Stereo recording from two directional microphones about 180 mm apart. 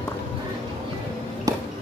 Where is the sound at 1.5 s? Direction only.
20° right (ahead or behind).